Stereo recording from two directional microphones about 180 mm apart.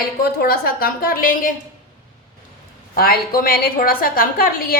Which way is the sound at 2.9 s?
55° left (ahead or behind).